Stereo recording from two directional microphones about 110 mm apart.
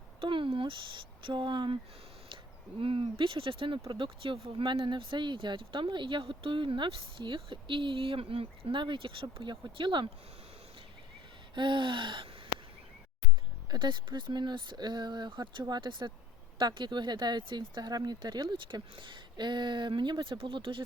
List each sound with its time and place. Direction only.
0.2 s a sound: 50° right (ahead or behind)
1.2 s speech: 45° right (ahead or behind)
11.5 s gasp: 45° right (ahead or behind)
13.7 s speech: 40° right (ahead or behind)